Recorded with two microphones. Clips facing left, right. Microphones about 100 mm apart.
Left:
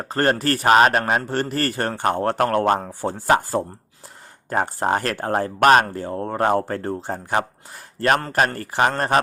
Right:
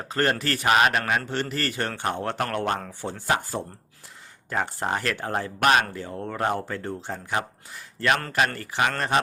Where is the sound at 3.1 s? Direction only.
40° left (ahead or behind).